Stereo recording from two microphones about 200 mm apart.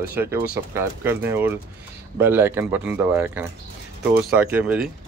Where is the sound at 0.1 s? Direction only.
10° right (ahead or behind).